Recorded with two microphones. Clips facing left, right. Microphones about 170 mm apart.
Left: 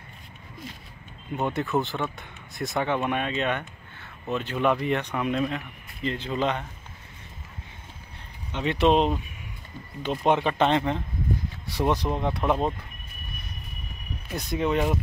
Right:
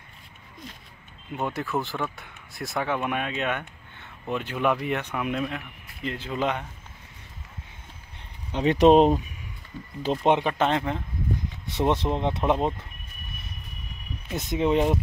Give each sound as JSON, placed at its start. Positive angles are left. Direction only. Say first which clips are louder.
{"t": 1.3, "sound": "speech", "louder": "left 2 dB", "side_deg": 0}
{"t": 8.5, "sound": "speech", "louder": "right 5 dB", "side_deg": -40}
{"t": 10.0, "sound": "speech", "louder": "right 1 dB", "side_deg": -20}
{"t": 10.4, "sound": "speech", "louder": "left 2 dB", "side_deg": -5}
{"t": 11.6, "sound": "speech", "louder": "right 1 dB", "side_deg": -25}
{"t": 14.3, "sound": "speech", "louder": "right 2 dB", "side_deg": -25}